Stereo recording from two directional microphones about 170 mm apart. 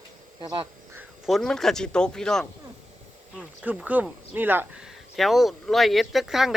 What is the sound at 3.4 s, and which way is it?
Speech, 10° right (ahead or behind).